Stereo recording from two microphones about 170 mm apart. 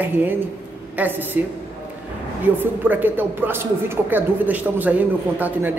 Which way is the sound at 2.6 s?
10° right (ahead or behind).